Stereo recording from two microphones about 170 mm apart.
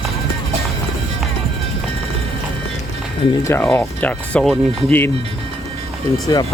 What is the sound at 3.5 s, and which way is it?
Speech, 15° left (ahead or behind).